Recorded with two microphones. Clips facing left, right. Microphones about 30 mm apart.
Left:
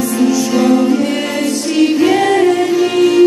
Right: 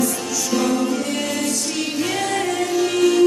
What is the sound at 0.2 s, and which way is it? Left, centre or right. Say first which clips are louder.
Music: left 9 dB; left.